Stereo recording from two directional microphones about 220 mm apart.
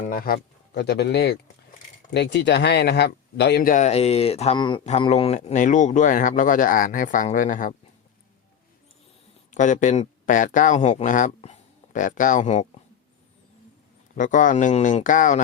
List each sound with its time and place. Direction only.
0.0 s speech: 40° left (ahead or behind)
9.5 s speech: 35° left (ahead or behind)
14.2 s speech: 35° left (ahead or behind)